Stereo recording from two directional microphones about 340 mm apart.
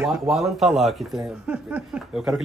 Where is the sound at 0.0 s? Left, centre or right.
Centre.